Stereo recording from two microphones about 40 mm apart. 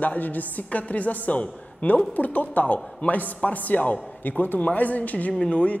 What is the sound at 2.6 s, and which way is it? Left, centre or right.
A man's voice, left.